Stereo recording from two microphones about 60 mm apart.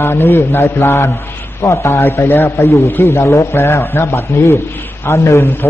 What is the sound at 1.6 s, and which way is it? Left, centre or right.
A man's voice, left.